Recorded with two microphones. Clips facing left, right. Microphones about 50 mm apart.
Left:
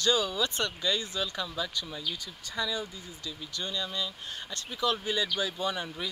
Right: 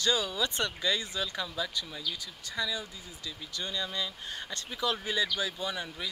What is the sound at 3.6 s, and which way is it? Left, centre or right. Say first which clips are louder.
Speech: even; centre.